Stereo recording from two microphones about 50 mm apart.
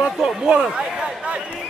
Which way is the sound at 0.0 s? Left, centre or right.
Centre.